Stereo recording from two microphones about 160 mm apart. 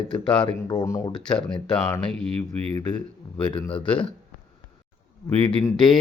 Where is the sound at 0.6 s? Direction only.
25° left (ahead or behind).